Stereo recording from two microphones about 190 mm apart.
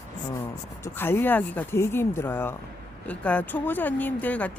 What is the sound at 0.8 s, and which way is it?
Speech, 10° left (ahead or behind).